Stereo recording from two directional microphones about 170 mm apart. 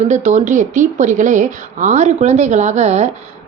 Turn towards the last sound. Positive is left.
turn(degrees=-40)  # may be behind; listen again after turning